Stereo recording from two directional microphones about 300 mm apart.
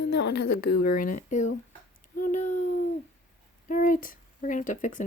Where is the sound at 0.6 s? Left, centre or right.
Left.